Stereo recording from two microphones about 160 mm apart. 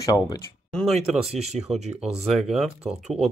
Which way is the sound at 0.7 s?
5° left (ahead or behind).